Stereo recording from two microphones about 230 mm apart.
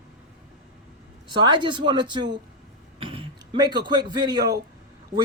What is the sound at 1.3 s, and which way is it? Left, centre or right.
A man's voice, centre.